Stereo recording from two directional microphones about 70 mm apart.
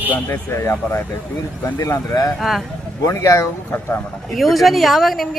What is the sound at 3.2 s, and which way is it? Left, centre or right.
Speech, left.